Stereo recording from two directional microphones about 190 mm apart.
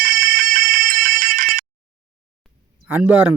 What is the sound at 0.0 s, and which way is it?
Fire alarm, 50° right (ahead or behind).